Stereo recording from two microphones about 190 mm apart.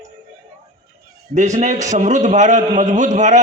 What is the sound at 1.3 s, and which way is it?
A man's voice, 40° right (ahead or behind).